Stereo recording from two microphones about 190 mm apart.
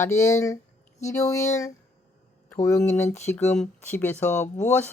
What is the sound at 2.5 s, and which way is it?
Speech, 15° left (ahead or behind).